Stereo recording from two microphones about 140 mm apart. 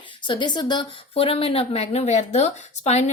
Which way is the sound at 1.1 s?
45° left (ahead or behind).